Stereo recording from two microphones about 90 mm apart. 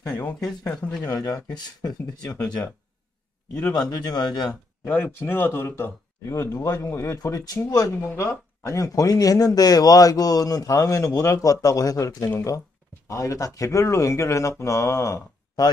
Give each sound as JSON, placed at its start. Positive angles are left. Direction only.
{"t": 0.1, "sound": "speech", "side_deg": 10}
{"t": 1.0, "sound": "speech", "side_deg": 45}
{"t": 3.9, "sound": "speech", "side_deg": 45}
{"t": 4.8, "sound": "speech", "side_deg": 20}
{"t": 6.3, "sound": "speech", "side_deg": 40}
{"t": 8.0, "sound": "speech", "side_deg": 25}